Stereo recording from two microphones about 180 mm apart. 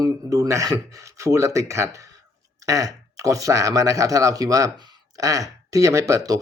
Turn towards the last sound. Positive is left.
turn(degrees=-20)  # may be behind; listen again after turning